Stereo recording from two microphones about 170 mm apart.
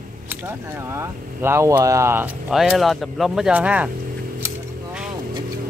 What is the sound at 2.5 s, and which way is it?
Speech, centre (ahead or behind).